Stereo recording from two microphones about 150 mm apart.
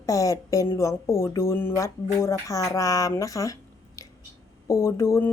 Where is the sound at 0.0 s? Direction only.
20° left (ahead or behind).